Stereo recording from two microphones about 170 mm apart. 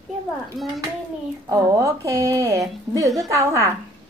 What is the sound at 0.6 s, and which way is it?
Speech, centre (ahead or behind).